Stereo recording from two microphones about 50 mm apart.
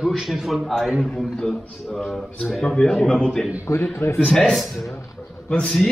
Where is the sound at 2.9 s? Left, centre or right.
Centre.